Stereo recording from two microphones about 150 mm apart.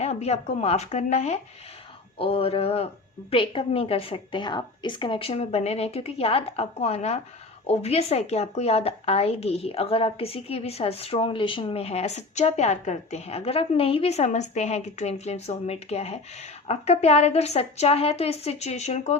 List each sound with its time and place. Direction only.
0.0 s a woman's voice: 45° left (ahead or behind)